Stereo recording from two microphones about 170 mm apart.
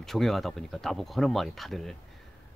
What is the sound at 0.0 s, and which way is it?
Speech, centre (ahead or behind).